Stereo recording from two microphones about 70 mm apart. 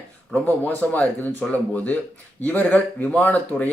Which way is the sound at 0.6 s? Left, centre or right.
Left.